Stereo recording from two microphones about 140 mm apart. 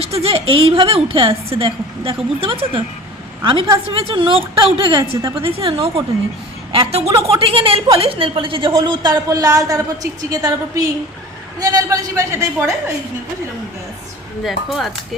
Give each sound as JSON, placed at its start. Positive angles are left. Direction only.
{"t": 0.0, "sound": "a woman's voice", "side_deg": -45}
{"t": 5.4, "sound": "a woman's voice", "side_deg": -40}
{"t": 14.4, "sound": "speech", "side_deg": 0}